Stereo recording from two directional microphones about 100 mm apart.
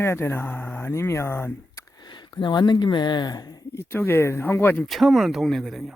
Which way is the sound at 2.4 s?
50° left (ahead or behind).